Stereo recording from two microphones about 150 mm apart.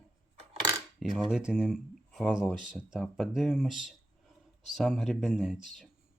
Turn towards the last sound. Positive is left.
turn(degrees=-5)  # may be behind; listen again after turning